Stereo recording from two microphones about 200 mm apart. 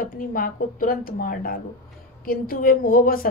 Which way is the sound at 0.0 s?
45° left (ahead or behind).